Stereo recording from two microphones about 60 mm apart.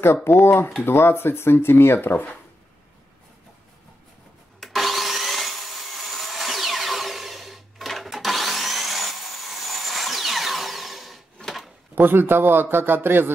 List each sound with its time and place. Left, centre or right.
0.0 s speech: left
4.6 s wood: centre
11.4 s a sound: centre
11.9 s a man's voice: right